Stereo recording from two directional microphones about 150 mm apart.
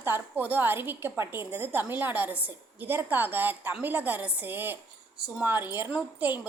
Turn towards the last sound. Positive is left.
turn(degrees=-10)  # may be behind; listen again after turning